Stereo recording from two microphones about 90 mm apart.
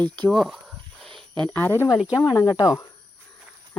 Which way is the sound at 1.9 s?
10° right (ahead or behind).